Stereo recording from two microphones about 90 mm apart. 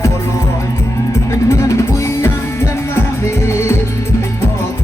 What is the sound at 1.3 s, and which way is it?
Music, 30° left (ahead or behind).